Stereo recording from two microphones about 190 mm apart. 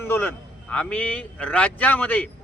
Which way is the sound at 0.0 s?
10° left (ahead or behind).